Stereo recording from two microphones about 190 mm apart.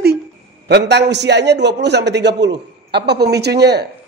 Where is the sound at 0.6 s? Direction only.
65° right (ahead or behind).